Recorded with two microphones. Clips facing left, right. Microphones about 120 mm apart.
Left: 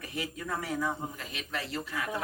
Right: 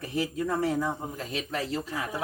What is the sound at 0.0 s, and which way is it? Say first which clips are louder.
A man's voice: right 8 dB; 30° right (ahead or behind).